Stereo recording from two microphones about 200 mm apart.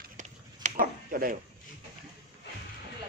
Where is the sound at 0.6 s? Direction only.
45° right (ahead or behind).